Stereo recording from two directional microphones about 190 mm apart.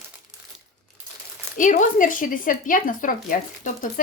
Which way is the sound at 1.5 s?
40° left (ahead or behind).